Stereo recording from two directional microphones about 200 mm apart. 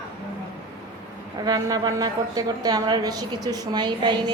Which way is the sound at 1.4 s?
20° right (ahead or behind).